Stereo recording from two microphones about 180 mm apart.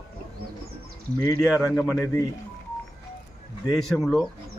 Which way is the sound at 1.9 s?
15° left (ahead or behind).